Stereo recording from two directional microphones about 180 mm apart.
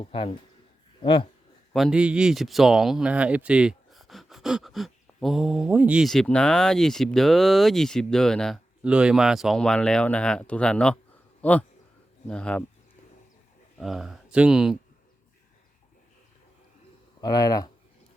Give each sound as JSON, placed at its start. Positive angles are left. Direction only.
{"t": 0.0, "sound": "speech", "side_deg": 30}
{"t": 1.7, "sound": "speech", "side_deg": -5}
{"t": 13.7, "sound": "speech", "side_deg": 0}
{"t": 17.2, "sound": "speech", "side_deg": 20}